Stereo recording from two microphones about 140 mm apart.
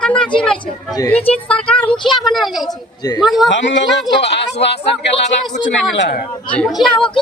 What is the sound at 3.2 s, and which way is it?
Speech, centre (ahead or behind).